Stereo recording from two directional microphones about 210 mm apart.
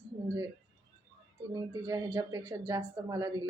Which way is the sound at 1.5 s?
20° right (ahead or behind).